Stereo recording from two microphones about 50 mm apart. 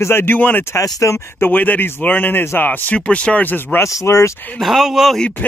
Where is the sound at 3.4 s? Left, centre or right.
Left.